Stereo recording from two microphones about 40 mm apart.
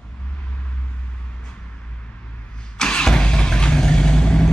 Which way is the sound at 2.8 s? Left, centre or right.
Left.